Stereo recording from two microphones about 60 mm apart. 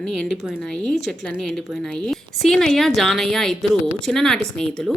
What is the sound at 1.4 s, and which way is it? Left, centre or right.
A woman's voice, centre.